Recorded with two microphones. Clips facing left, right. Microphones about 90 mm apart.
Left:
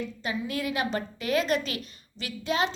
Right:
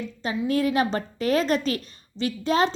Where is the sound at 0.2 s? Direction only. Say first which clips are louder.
Right 10 dB; 35° right (ahead or behind).